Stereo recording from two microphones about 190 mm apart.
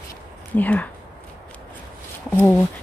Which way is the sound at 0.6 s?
5° left (ahead or behind).